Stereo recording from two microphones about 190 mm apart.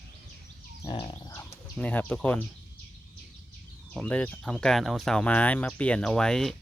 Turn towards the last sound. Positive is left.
turn(degrees=5)  # may be behind; listen again after turning